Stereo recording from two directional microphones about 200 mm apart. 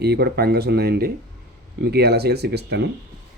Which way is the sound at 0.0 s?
55° right (ahead or behind).